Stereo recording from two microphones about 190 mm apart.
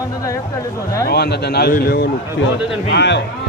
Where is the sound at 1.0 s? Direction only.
55° left (ahead or behind).